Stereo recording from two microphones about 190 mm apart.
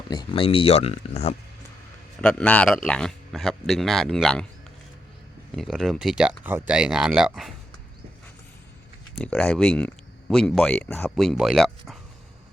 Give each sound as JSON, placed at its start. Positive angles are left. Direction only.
{"t": 0.1, "sound": "speech", "side_deg": 25}
{"t": 2.2, "sound": "speech", "side_deg": 5}
{"t": 5.5, "sound": "speech", "side_deg": 0}
{"t": 9.1, "sound": "speech", "side_deg": 5}